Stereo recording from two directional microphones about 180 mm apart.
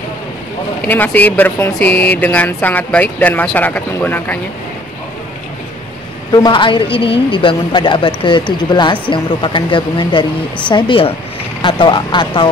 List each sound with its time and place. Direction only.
0.8 s speech: 10° left (ahead or behind)
6.3 s a man's voice: 25° left (ahead or behind)